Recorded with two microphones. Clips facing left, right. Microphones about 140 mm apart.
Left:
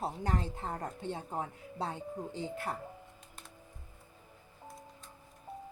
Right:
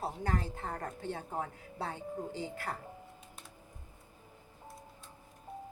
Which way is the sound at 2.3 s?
20° left (ahead or behind).